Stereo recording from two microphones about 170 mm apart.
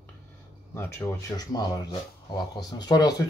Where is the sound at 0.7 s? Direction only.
15° left (ahead or behind).